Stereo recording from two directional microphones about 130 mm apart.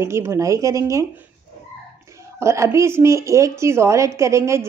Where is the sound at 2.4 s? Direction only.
20° right (ahead or behind).